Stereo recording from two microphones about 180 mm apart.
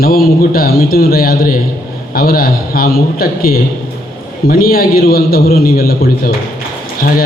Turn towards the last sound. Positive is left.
turn(degrees=55)  # may be behind; listen again after turning